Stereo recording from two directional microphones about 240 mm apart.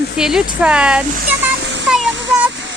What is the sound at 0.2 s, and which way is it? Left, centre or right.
Speech, centre.